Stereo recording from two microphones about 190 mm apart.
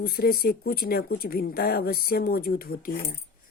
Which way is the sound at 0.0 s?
55° left (ahead or behind).